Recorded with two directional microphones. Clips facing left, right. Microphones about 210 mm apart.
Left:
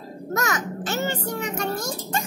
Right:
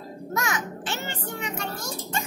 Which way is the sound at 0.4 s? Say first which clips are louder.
Left 3 dB; 40° left (ahead or behind).